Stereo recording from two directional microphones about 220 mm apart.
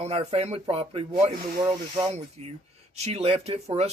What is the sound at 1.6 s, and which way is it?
Speech, 15° right (ahead or behind).